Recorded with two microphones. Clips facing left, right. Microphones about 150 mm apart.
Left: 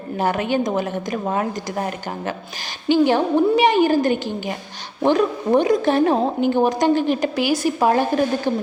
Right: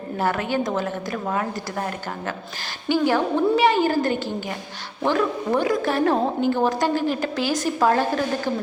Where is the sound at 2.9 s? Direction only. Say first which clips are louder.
Left 4 dB; 20° left (ahead or behind).